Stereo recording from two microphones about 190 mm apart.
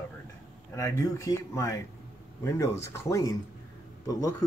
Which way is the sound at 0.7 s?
15° left (ahead or behind).